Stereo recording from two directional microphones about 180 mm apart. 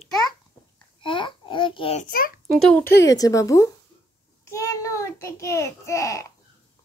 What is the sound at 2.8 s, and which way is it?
Speech, 65° left (ahead or behind).